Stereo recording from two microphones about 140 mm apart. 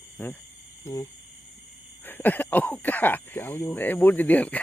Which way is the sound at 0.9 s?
20° left (ahead or behind).